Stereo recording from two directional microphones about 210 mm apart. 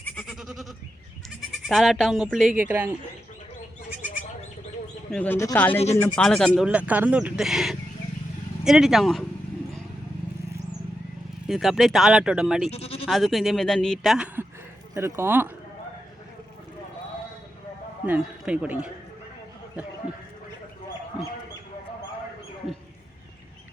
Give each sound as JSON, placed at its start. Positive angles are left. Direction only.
{"t": 0.0, "sound": "goat", "side_deg": 0}
{"t": 1.6, "sound": "speech", "side_deg": 0}
{"t": 5.1, "sound": "speech", "side_deg": 10}
{"t": 11.4, "sound": "speech", "side_deg": 0}
{"t": 12.7, "sound": "bleat", "side_deg": 30}
{"t": 13.1, "sound": "speech", "side_deg": 0}
{"t": 14.9, "sound": "speech", "side_deg": -15}
{"t": 18.0, "sound": "speech", "side_deg": -5}